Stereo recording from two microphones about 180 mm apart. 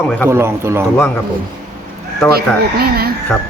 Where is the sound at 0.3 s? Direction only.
15° right (ahead or behind).